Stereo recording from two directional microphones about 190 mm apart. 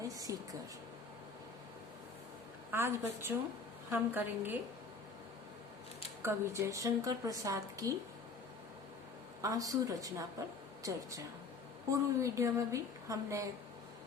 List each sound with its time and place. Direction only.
0.0 s a sound: 20° right (ahead or behind)
2.7 s a woman's voice: 10° right (ahead or behind)
6.2 s a woman's voice: 15° right (ahead or behind)
9.4 s a woman's voice: 15° right (ahead or behind)
11.9 s a woman's voice: 15° right (ahead or behind)